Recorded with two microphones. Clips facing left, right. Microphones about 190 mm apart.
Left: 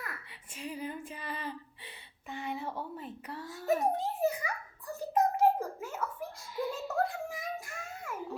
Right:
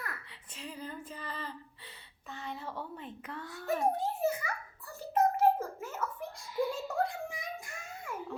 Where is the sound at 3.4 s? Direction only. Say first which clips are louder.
Left 2 dB; 20° left (ahead or behind).